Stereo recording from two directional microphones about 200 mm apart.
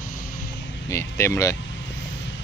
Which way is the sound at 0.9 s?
15° left (ahead or behind).